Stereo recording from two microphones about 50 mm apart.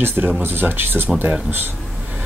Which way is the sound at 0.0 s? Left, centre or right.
Right.